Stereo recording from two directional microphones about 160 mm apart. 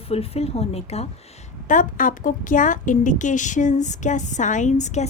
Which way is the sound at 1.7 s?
55° left (ahead or behind).